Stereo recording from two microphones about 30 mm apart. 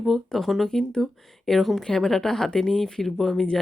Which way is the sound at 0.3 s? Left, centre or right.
Centre.